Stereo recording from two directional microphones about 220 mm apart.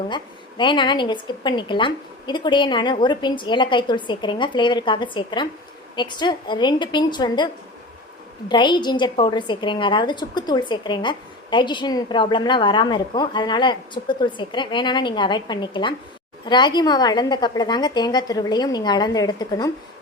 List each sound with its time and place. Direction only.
0.1 s a woman's voice: 20° left (ahead or behind)